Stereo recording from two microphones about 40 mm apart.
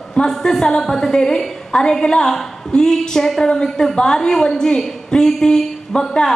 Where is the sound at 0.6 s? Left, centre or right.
Centre.